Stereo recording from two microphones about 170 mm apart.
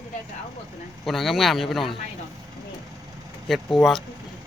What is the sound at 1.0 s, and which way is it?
Speech, centre (ahead or behind).